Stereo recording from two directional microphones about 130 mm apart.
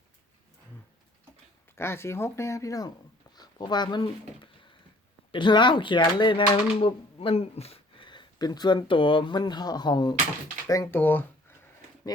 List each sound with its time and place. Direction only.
1.7 s speech: 20° left (ahead or behind); by 4.1 s 35° left (ahead or behind)
5.3 s speech: 35° left (ahead or behind)
11.0 s speech: 15° left (ahead or behind)